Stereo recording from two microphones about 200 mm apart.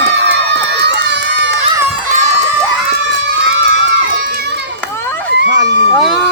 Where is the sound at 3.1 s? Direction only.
65° right (ahead or behind).